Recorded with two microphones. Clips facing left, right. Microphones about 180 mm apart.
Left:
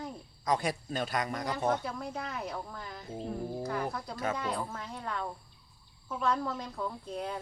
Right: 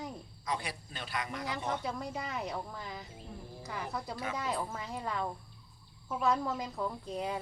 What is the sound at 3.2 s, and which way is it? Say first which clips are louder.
Speech: left 11 dB; 60° left (ahead or behind).